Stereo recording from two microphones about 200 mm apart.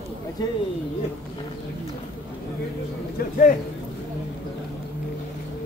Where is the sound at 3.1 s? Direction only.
45° left (ahead or behind).